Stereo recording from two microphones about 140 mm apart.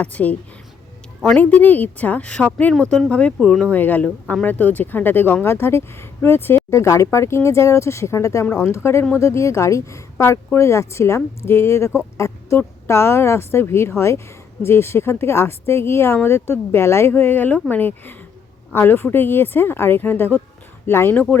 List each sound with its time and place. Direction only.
0.0 s speech: 10° left (ahead or behind)